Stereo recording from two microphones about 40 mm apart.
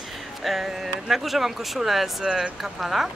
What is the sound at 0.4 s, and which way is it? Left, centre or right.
Speech, centre.